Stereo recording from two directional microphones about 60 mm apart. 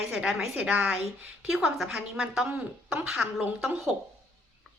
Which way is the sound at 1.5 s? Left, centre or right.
Centre.